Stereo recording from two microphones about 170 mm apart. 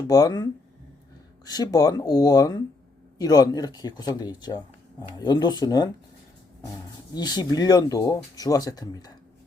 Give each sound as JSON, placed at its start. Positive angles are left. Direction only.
{"t": 0.0, "sound": "speech", "side_deg": 20}
{"t": 1.5, "sound": "speech", "side_deg": 25}
{"t": 7.1, "sound": "speech", "side_deg": 25}